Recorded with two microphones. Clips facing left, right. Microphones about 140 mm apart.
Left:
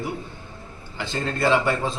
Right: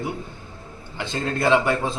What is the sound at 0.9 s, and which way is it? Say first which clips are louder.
Speech: right 1 dB; 15° right (ahead or behind).